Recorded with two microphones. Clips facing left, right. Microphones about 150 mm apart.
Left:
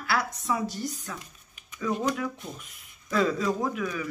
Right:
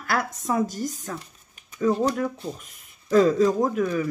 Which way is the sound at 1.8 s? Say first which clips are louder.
Right 6 dB; 35° right (ahead or behind).